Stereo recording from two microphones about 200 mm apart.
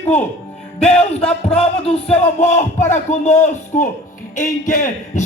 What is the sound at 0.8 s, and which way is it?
Music, 30° left (ahead or behind).